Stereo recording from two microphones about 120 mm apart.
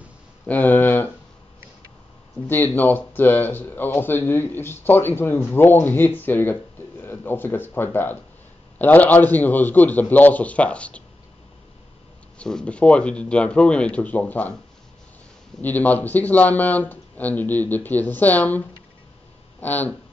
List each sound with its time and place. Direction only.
0.5 s a sound: 15° left (ahead or behind)
2.4 s speech: 15° left (ahead or behind)
12.4 s speech: 5° left (ahead or behind)
15.6 s speech: 15° left (ahead or behind)
19.6 s speech: 15° left (ahead or behind)